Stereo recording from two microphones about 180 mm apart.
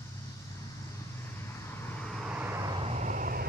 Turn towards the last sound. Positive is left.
turn(degrees=-50)  # may be behind; listen again after turning